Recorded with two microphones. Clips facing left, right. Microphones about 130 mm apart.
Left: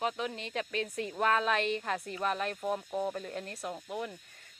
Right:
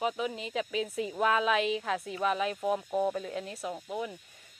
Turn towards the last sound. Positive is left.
turn(degrees=0)  # may be behind; listen again after turning